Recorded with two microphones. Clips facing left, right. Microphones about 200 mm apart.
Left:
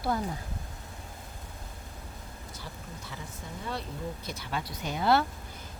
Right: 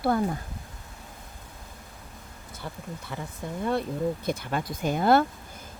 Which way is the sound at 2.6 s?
55° right (ahead or behind).